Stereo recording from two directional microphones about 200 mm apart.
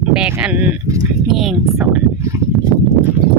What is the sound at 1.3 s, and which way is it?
Speech, centre (ahead or behind).